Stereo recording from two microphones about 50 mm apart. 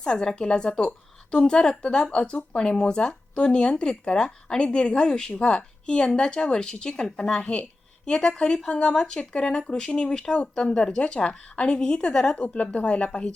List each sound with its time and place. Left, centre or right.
0.0 s a woman's voice: centre
12.4 s speech: left